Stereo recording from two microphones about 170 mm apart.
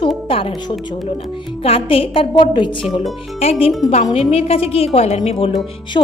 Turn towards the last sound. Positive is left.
turn(degrees=30)  # may be behind; listen again after turning